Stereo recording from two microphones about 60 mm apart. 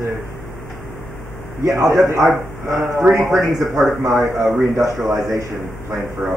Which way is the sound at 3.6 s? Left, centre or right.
Right.